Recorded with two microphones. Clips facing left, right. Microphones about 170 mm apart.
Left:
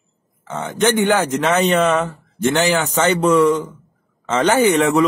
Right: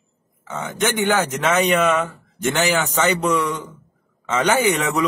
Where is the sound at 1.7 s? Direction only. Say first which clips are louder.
Left 2 dB; 35° left (ahead or behind).